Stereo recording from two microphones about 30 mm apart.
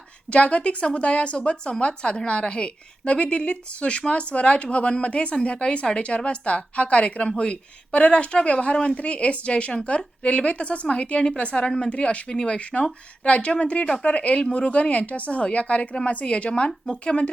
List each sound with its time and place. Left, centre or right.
0.3 s a woman's voice: left
12.7 s speech: left
13.2 s a woman's voice: left
16.2 s a woman's voice: left